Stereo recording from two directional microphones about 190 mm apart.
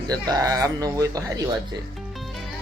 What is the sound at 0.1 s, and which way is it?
Speech, 20° right (ahead or behind).